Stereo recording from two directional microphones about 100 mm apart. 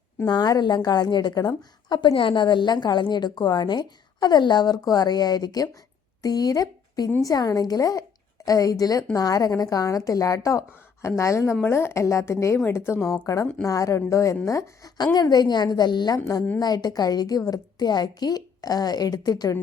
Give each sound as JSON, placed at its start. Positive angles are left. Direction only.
{"t": 0.3, "sound": "a woman's voice", "side_deg": 40}
{"t": 14.9, "sound": "a woman's voice", "side_deg": 45}